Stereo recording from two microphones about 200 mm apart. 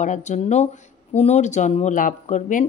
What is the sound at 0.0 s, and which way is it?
Speech, 35° left (ahead or behind).